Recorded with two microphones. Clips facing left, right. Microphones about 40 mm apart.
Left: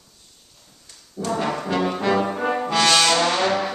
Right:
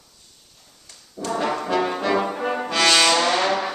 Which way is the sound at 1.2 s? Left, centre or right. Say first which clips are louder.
Even; centre.